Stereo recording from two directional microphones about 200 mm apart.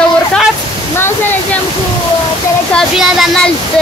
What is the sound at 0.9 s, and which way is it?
Waterfall, 10° left (ahead or behind).